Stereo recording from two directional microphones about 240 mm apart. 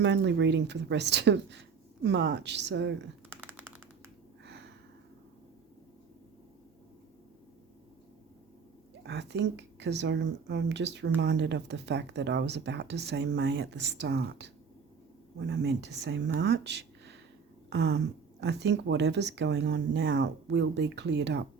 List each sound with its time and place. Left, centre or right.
0.0 s speech: right
3.2 s typing: centre
4.4 s a sound: right
9.0 s speech: right